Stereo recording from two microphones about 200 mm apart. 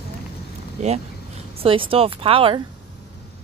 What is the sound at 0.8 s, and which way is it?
Speech, 35° right (ahead or behind).